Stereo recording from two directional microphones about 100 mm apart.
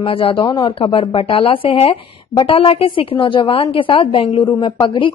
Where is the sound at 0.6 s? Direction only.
65° left (ahead or behind).